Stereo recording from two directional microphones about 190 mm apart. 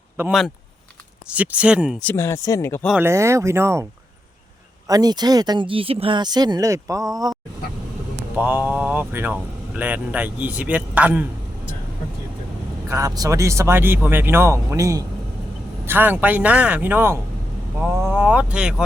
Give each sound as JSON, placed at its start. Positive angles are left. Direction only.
{"t": 0.2, "sound": "speech", "side_deg": 0}
{"t": 2.0, "sound": "speech", "side_deg": 15}
{"t": 3.0, "sound": "speech", "side_deg": -15}
{"t": 4.9, "sound": "speech", "side_deg": -20}
{"t": 8.4, "sound": "speech", "side_deg": -10}
{"t": 12.9, "sound": "speech", "side_deg": -15}